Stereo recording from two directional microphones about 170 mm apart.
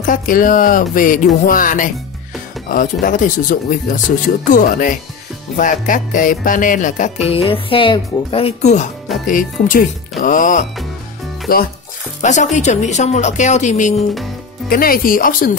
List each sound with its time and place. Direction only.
0.0 s music: 50° left (ahead or behind)
9.3 s music: 50° left (ahead or behind)
11.4 s speech: 60° left (ahead or behind)
12.2 s music: 45° left (ahead or behind)
14.7 s speech: 60° left (ahead or behind)